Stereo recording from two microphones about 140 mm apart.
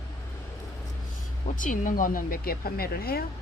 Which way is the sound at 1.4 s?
65° left (ahead or behind).